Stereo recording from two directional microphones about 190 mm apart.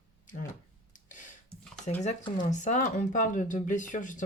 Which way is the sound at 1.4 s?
5° left (ahead or behind).